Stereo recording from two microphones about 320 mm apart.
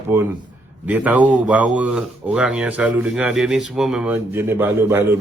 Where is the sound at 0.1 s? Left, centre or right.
Centre.